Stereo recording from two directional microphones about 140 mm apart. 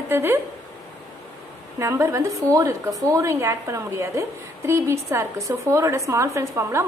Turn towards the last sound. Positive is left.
turn(degrees=-20)  # may be behind; listen again after turning